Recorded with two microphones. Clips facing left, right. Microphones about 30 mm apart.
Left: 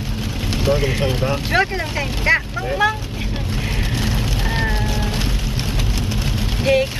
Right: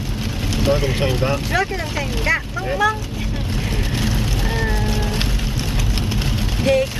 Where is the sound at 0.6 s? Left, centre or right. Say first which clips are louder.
Even; centre.